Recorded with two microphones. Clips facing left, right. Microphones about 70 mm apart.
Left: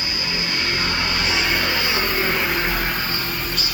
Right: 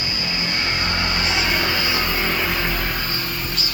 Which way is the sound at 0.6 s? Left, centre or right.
Right.